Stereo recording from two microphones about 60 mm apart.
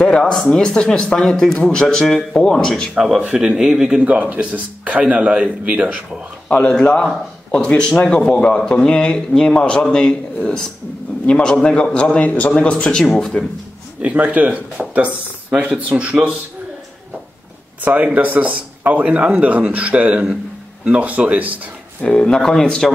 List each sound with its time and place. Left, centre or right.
0.0 s speech: centre
2.9 s a man's voice: centre
4.0 s a man's voice: right
6.5 s speech: centre
14.0 s a man's voice: right
17.8 s a man's voice: right
22.0 s speech: centre